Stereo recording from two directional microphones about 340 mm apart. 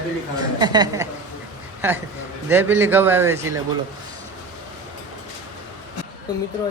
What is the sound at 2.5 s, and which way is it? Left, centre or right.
Speech, centre.